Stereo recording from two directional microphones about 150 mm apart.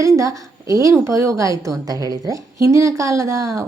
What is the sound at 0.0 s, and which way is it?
A woman's voice, 20° right (ahead or behind).